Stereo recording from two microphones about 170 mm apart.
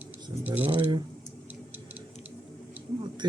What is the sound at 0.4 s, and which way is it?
Speech, 10° right (ahead or behind).